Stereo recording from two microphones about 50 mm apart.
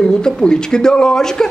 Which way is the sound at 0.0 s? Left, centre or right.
Centre.